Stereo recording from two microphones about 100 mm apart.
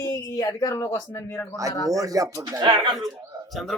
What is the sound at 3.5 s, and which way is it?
Speech, centre (ahead or behind).